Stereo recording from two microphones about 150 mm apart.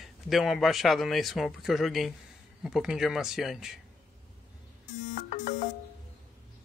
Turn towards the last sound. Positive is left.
turn(degrees=55)  # may be behind; listen again after turning